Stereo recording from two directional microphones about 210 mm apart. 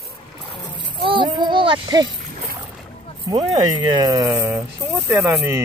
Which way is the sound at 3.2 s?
20° right (ahead or behind).